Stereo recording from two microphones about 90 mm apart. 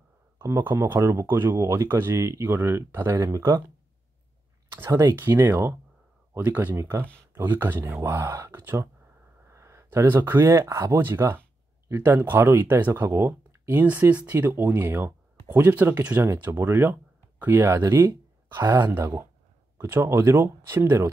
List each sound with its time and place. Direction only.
0.4 s speech: 25° right (ahead or behind)
1.5 s speech: 35° right (ahead or behind)
4.6 s speech: 30° right (ahead or behind)
8.5 s a sound: 25° right (ahead or behind)
11.0 s speech: 25° right (ahead or behind)